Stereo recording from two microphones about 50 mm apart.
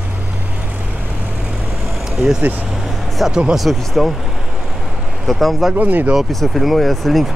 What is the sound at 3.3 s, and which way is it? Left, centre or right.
Speech, centre.